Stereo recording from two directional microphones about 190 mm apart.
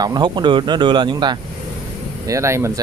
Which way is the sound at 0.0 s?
20° right (ahead or behind).